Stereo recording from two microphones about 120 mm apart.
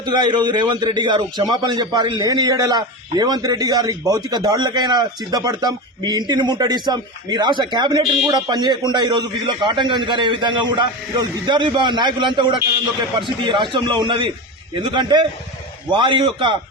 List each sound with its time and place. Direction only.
0.0 s a man's voice: 40° right (ahead or behind)